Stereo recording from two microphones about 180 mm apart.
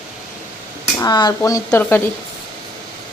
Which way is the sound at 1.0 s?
20° left (ahead or behind).